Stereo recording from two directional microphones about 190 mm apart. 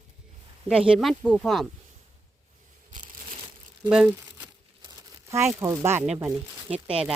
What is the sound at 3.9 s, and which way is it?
Crumpling, 5° right (ahead or behind).